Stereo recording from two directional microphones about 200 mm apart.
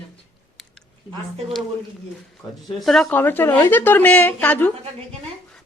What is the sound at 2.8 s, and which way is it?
A woman's voice, centre (ahead or behind).